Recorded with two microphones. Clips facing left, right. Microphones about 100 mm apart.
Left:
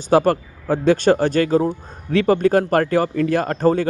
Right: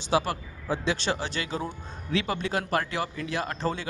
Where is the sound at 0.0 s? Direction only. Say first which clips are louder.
Left 11 dB; 50° left (ahead or behind).